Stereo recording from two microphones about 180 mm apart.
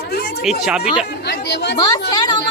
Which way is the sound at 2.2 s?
25° left (ahead or behind).